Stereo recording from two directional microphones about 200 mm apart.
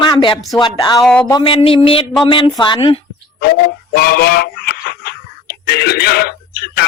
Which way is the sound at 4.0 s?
50° left (ahead or behind).